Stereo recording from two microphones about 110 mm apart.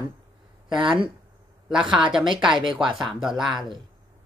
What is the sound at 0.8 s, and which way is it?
Speech, 50° right (ahead or behind).